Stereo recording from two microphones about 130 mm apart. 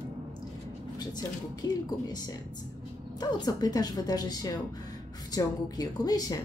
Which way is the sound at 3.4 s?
30° left (ahead or behind).